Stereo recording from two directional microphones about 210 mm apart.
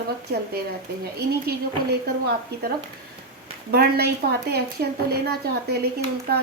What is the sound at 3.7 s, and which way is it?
Speech, 50° right (ahead or behind).